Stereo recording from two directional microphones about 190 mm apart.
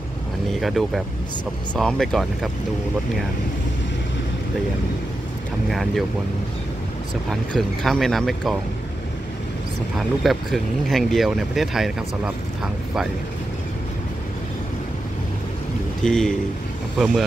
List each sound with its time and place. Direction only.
0.5 s speech: centre (ahead or behind)
5.7 s speech: centre (ahead or behind)
7.2 s speech: centre (ahead or behind)
9.9 s speech: centre (ahead or behind)
16.0 s speech: 5° left (ahead or behind)